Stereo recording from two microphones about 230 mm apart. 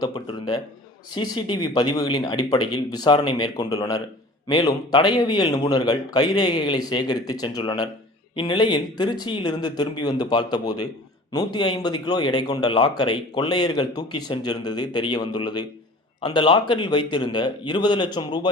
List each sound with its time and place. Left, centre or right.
0.0 s a man's voice: centre